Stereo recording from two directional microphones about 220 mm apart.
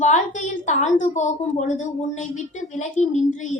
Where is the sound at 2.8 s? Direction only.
35° left (ahead or behind).